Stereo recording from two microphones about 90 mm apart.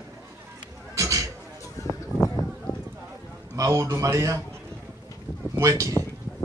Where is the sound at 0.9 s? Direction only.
40° right (ahead or behind).